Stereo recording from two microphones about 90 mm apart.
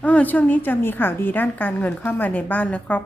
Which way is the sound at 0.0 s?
15° left (ahead or behind).